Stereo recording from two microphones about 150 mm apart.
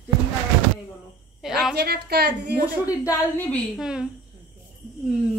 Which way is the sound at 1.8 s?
90° right.